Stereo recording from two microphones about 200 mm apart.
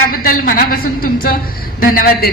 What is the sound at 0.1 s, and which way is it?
A woman's voice, 45° left (ahead or behind).